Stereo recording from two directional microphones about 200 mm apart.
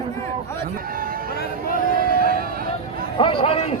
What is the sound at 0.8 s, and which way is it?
Music, 45° right (ahead or behind).